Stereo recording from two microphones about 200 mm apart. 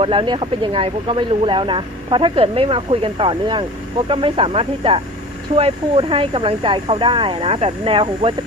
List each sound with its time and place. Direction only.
0.0 s speech: 25° right (ahead or behind)